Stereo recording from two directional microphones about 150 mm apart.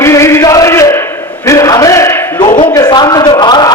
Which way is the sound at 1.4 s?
20° left (ahead or behind).